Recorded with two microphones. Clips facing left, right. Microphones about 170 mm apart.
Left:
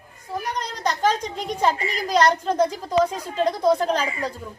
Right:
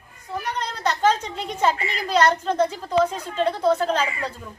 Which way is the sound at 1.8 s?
40° left (ahead or behind).